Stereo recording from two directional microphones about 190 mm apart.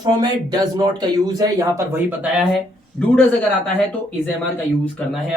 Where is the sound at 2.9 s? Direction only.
5° left (ahead or behind).